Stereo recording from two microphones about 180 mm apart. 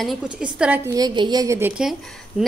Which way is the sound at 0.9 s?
25° right (ahead or behind).